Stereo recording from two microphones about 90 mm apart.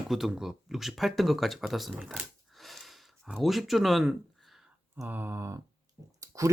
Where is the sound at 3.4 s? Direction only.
Centre (ahead or behind).